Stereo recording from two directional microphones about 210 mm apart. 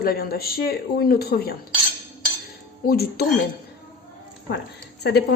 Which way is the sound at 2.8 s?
45° left (ahead or behind).